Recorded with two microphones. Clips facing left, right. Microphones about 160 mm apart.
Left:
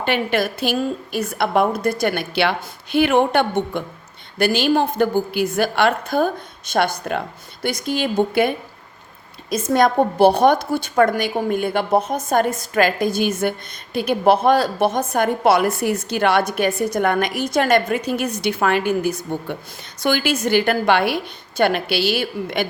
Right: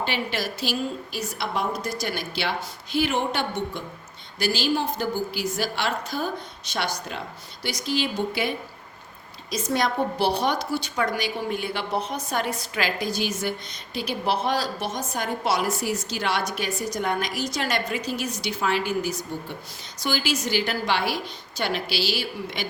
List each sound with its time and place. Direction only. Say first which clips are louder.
0.0 s a woman's voice: left 8 dB; 55° left (ahead or behind)